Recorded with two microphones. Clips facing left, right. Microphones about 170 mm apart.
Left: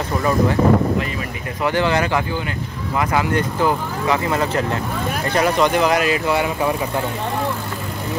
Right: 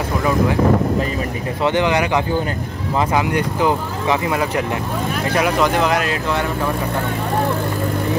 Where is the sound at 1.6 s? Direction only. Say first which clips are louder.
Right 1 dB; 20° right (ahead or behind); by 6.5 s 5° left (ahead or behind).